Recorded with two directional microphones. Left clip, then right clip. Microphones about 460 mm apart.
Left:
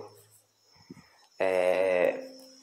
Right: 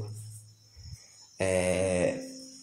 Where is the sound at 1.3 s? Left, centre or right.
Centre.